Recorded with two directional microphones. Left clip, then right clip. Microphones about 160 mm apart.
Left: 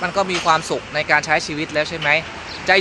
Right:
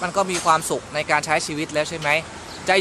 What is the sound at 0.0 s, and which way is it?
Speech, 15° right (ahead or behind).